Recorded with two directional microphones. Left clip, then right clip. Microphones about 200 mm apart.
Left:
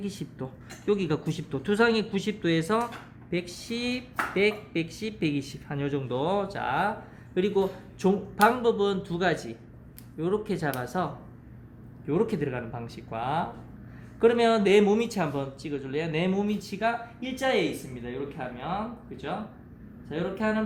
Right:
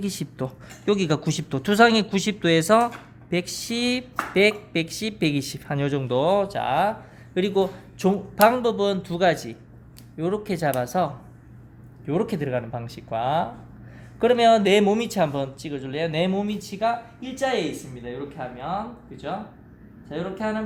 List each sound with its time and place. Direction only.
0.0 s speech: 55° right (ahead or behind); by 16.9 s 25° right (ahead or behind)
17.2 s speech: 15° right (ahead or behind)